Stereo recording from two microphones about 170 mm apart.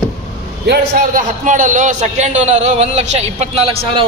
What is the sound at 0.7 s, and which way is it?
A man's voice, 55° right (ahead or behind).